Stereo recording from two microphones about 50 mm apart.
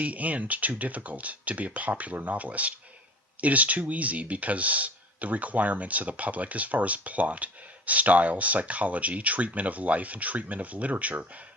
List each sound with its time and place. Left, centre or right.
0.0 s speech: right